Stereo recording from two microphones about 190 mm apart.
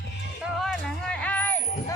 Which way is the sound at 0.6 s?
5° left (ahead or behind).